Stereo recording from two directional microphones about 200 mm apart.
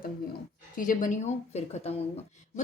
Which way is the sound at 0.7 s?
45° left (ahead or behind).